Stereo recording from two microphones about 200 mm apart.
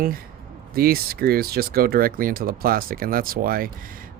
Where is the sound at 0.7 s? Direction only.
50° right (ahead or behind).